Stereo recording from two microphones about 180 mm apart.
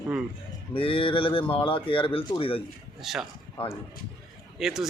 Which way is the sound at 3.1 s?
Centre (ahead or behind).